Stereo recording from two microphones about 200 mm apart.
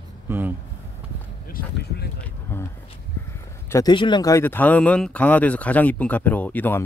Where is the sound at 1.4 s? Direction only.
50° left (ahead or behind).